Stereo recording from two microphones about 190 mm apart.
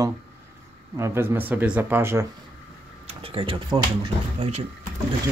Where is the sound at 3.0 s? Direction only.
30° right (ahead or behind).